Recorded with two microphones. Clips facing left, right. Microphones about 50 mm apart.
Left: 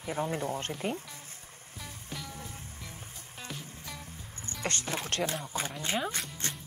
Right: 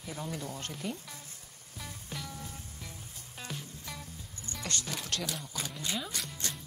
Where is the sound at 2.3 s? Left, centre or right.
Left.